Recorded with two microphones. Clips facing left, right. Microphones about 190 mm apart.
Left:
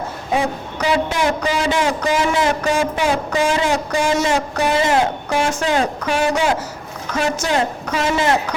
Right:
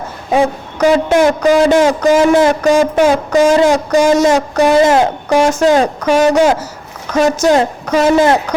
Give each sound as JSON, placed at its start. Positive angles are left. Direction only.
{"t": 0.8, "sound": "a man's voice", "side_deg": -45}